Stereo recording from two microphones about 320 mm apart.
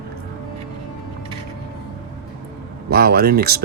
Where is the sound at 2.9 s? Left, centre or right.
Right.